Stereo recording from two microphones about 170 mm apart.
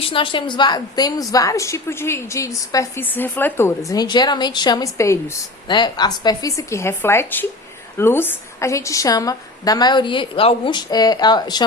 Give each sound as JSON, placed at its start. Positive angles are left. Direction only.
{"t": 0.0, "sound": "a woman's voice", "side_deg": 30}